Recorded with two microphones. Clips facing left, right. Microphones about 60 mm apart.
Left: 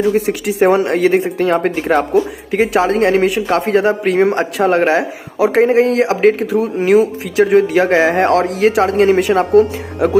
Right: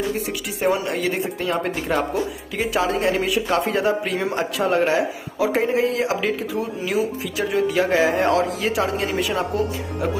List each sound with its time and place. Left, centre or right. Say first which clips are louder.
0.1 s speech: left 10 dB; left